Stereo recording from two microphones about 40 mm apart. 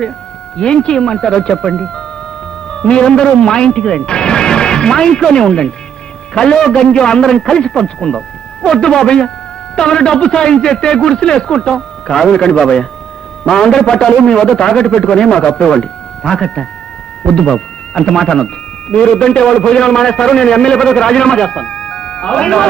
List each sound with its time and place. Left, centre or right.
0.5 s a man's voice: left